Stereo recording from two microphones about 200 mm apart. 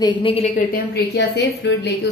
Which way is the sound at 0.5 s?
50° left (ahead or behind).